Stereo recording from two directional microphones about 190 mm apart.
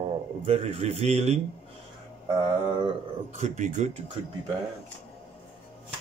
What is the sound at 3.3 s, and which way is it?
Speech, 40° right (ahead or behind).